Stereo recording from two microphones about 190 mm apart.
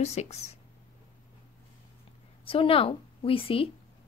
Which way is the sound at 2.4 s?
30° left (ahead or behind).